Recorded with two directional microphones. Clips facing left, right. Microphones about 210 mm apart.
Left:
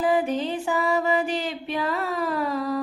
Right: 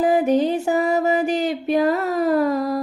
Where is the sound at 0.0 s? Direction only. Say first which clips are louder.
Right 6 dB; 45° right (ahead or behind).